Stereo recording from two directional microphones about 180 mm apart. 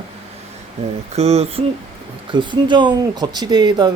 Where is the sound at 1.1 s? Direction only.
35° right (ahead or behind).